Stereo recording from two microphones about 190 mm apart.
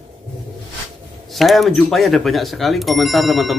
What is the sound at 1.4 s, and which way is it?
Speech, centre (ahead or behind).